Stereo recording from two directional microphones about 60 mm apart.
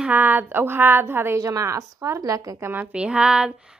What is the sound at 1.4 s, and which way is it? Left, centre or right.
A woman's voice, right.